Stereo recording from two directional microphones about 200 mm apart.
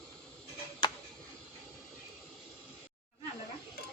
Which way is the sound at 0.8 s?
20° left (ahead or behind).